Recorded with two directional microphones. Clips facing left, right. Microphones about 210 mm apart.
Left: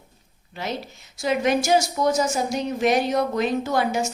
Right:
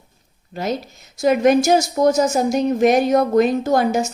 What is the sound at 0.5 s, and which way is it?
A woman's voice, 40° right (ahead or behind).